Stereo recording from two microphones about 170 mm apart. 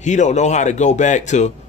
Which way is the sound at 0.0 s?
45° left (ahead or behind).